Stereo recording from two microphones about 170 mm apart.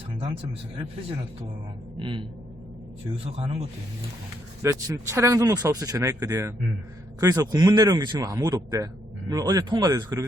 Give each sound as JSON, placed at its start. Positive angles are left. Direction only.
{"t": 2.0, "sound": "a man's voice", "side_deg": -30}
{"t": 4.6, "sound": "a man's voice", "side_deg": -15}